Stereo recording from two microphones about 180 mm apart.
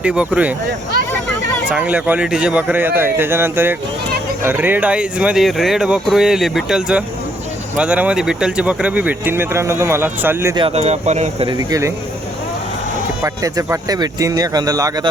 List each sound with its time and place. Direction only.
0.0 s speech: 5° right (ahead or behind)
1.7 s speech: 5° right (ahead or behind)
10.5 s speech: 30° right (ahead or behind)
11.4 s speech: 20° right (ahead or behind)
13.2 s speech: 20° right (ahead or behind)